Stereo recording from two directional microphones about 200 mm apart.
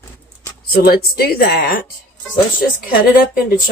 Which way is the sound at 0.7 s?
50° left (ahead or behind).